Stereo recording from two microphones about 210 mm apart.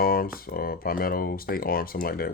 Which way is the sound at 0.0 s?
45° left (ahead or behind).